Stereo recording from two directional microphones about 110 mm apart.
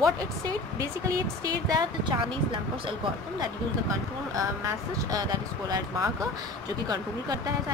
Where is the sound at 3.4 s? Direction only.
30° right (ahead or behind).